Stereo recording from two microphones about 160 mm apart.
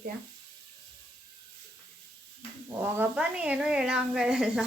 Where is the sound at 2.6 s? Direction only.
15° right (ahead or behind).